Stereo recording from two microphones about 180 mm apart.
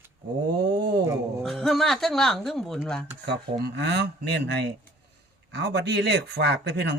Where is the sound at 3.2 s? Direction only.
70° right (ahead or behind).